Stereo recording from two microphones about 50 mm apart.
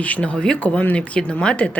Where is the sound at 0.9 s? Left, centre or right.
Centre.